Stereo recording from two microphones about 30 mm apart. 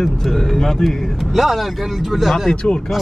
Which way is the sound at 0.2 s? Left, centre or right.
Centre.